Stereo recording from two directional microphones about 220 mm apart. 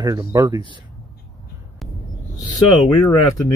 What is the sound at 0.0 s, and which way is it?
Speech, 15° right (ahead or behind).